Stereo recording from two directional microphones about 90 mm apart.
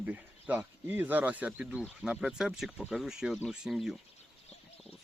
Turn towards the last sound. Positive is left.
turn(degrees=-5)  # may be behind; listen again after turning